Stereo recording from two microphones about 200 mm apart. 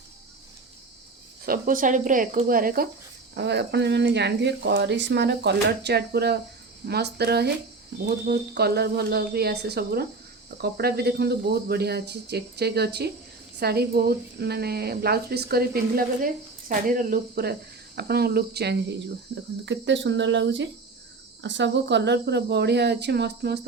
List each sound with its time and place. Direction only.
1.5 s speech: 40° right (ahead or behind)
3.3 s speech: 55° right (ahead or behind)